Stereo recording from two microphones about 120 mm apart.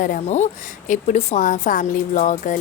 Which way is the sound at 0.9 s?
85° left.